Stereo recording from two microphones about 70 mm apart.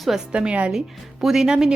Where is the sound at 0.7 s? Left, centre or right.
Centre.